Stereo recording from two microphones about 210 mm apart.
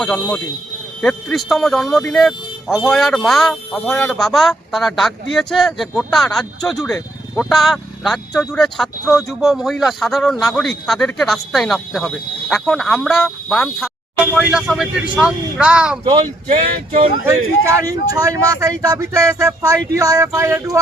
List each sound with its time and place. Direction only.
0.0 s speech: 5° left (ahead or behind)
16.2 s speech: 35° right (ahead or behind)
17.2 s speech: 15° right (ahead or behind)